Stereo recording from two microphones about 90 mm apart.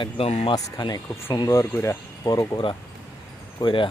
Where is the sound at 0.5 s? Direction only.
50° left (ahead or behind).